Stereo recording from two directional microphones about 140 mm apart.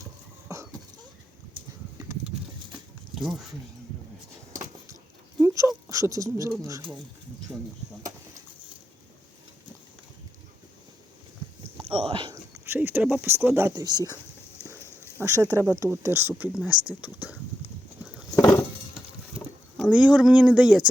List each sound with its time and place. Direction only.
0.4 s a sound: 20° right (ahead or behind)
3.2 s speech: centre (ahead or behind)
5.4 s speech: 25° right (ahead or behind)
11.9 s speech: 40° right (ahead or behind)
12.3 s speech: 15° right (ahead or behind)
13.8 s speech: 30° right (ahead or behind)
15.2 s speech: 20° right (ahead or behind)
16.5 s speech: 5° right (ahead or behind)
19.8 s speech: 10° right (ahead or behind)